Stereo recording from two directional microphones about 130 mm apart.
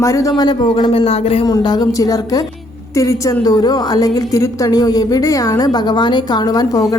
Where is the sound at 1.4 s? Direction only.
30° left (ahead or behind).